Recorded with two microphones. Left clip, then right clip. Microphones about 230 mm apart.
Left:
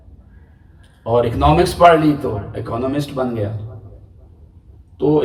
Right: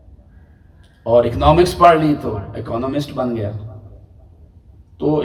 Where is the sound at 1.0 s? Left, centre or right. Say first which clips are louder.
Right 2 dB; centre.